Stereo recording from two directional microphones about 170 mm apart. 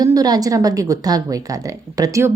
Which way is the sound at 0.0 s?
20° right (ahead or behind).